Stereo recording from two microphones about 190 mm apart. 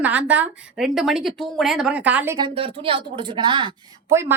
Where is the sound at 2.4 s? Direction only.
30° right (ahead or behind).